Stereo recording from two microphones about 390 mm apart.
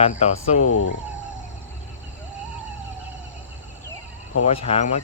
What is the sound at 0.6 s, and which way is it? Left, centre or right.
Speech, left.